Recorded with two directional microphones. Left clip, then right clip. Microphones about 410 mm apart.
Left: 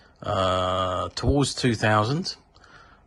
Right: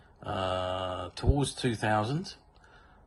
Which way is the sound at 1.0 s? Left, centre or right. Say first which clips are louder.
Left 8 dB; centre.